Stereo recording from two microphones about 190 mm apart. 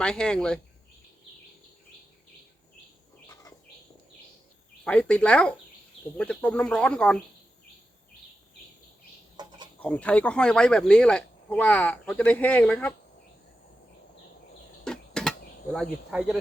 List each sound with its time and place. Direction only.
0.0 s speech: 5° left (ahead or behind)
4.9 s speech: 5° left (ahead or behind)
9.4 s chicken: 20° right (ahead or behind)
9.8 s speech: 5° left (ahead or behind)
14.8 s a sound: 5° left (ahead or behind)